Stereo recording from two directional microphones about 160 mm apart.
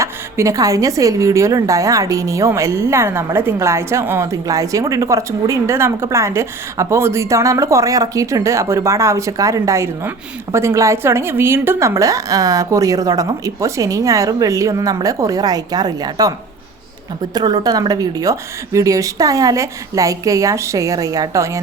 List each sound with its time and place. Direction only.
0.0 s a woman's voice: 20° right (ahead or behind)
17.3 s a woman's voice: 25° right (ahead or behind)